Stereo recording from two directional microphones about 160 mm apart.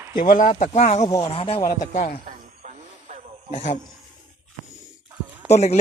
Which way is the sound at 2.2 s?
50° right (ahead or behind).